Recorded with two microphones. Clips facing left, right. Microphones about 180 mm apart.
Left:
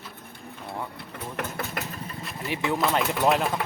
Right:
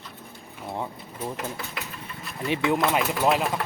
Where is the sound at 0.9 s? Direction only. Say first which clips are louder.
Right 1 dB; 60° left (ahead or behind).